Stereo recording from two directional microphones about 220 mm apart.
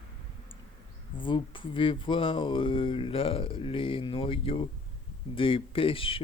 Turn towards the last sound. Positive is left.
turn(degrees=25)  # may be behind; listen again after turning